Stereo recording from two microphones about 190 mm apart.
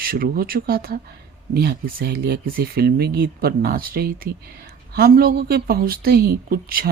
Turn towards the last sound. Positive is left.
turn(degrees=-50)  # may be behind; listen again after turning